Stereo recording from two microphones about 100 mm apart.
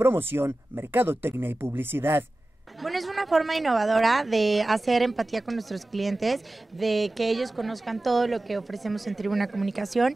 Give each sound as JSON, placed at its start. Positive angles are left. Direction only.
{"t": 0.0, "sound": "speech", "side_deg": -20}
{"t": 2.8, "sound": "a woman's voice", "side_deg": 0}